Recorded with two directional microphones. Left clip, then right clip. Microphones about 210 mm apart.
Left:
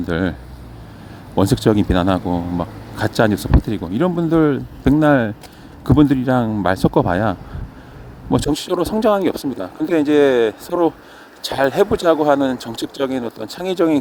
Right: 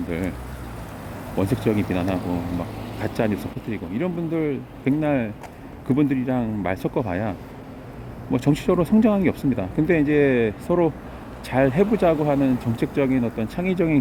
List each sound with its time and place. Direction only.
0.1 s speech: 20° left (ahead or behind)
1.4 s speech: 20° left (ahead or behind)